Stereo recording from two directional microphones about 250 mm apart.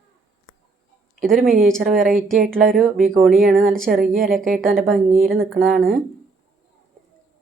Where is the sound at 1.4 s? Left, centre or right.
Right.